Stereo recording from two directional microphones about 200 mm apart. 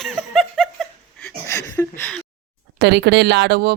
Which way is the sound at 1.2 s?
15° left (ahead or behind).